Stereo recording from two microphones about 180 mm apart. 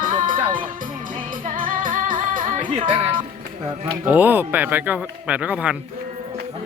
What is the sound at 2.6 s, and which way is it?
Music, 25° right (ahead or behind).